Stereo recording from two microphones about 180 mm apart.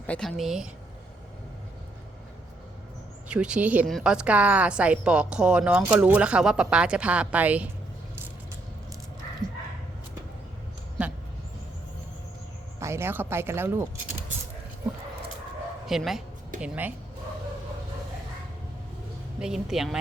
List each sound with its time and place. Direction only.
0.1 s speech: centre (ahead or behind)
3.2 s a woman's voice: 5° right (ahead or behind)
12.8 s speech: 15° right (ahead or behind)
15.9 s a woman's voice: centre (ahead or behind)
19.4 s speech: centre (ahead or behind)